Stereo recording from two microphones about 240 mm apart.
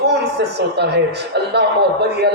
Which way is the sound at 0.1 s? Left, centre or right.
Right.